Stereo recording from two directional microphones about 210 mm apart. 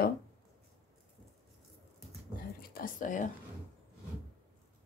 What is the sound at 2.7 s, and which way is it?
Speech, 40° left (ahead or behind).